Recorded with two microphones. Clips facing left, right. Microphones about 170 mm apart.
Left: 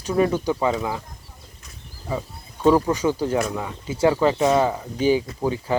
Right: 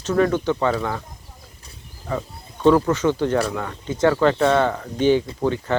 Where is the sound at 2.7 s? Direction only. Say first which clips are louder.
Right 1 dB; 15° left (ahead or behind).